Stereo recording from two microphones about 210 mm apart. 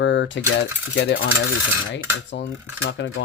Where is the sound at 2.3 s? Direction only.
60° left (ahead or behind).